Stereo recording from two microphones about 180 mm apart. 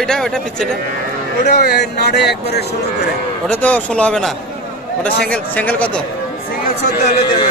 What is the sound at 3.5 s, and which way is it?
Speech, 10° left (ahead or behind).